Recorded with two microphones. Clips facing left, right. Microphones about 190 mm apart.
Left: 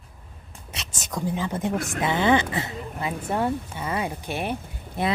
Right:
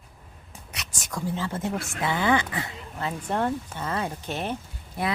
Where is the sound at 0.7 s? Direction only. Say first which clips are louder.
Left 3 dB; 25° left (ahead or behind).